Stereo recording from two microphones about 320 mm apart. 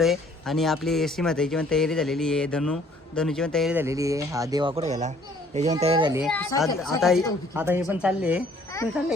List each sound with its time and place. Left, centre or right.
0.0 s speech: centre
6.2 s speech: centre
8.7 s a sound: centre